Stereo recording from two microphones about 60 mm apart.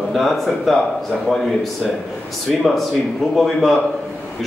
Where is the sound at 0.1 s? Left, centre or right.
Centre.